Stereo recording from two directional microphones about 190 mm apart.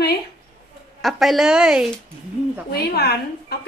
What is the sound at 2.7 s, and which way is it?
Speech, 55° left (ahead or behind).